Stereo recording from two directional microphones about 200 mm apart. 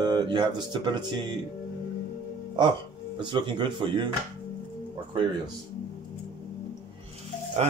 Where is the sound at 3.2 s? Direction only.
25° right (ahead or behind).